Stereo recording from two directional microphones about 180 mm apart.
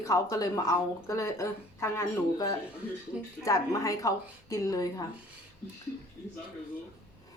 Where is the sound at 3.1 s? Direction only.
5° right (ahead or behind).